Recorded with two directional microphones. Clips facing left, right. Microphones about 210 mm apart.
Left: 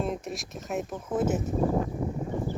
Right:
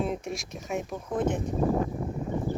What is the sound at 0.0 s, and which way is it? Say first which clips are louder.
Speech: right 1 dB; centre (ahead or behind).